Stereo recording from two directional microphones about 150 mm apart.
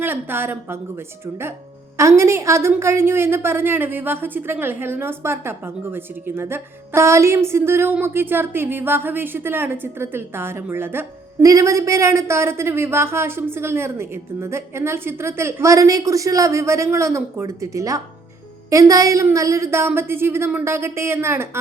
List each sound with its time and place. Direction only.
0.0 s a woman's voice: 15° right (ahead or behind)